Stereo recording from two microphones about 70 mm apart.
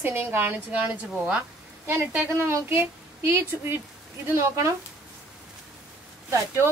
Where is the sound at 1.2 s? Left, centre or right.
Right.